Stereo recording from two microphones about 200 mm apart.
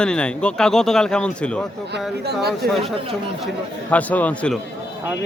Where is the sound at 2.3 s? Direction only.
55° right (ahead or behind).